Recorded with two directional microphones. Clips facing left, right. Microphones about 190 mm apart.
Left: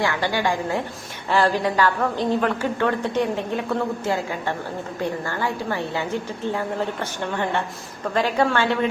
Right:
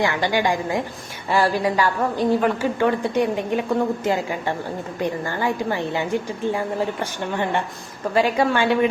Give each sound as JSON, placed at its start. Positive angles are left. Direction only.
{"t": 0.0, "sound": "a woman's voice", "side_deg": -15}